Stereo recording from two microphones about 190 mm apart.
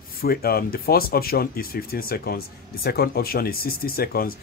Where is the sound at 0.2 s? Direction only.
55° left (ahead or behind).